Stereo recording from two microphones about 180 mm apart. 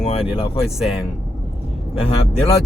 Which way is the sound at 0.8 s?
Centre (ahead or behind).